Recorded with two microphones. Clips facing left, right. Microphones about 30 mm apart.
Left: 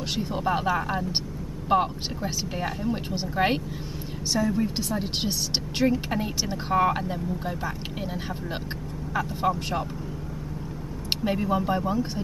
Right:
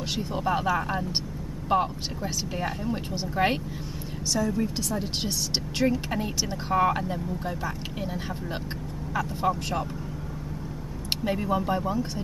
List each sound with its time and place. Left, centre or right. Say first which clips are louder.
0.1 s a woman's voice: left 1 dB; centre
11.1 s speech: left 1 dB; centre